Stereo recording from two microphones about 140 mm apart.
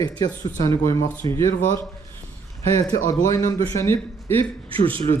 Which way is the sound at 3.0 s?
25° left (ahead or behind).